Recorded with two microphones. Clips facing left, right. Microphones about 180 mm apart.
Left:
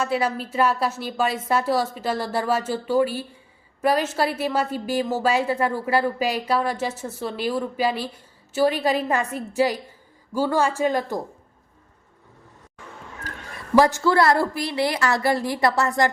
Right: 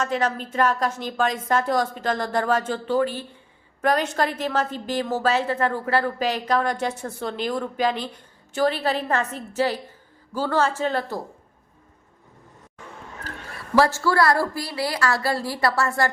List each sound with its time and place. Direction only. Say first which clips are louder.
0.0 s a woman's voice: left 1 dB; 10° left (ahead or behind)
13.7 s a woman's voice: left 2 dB; 15° left (ahead or behind)